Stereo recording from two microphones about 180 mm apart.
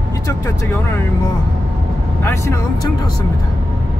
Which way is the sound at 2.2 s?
15° left (ahead or behind).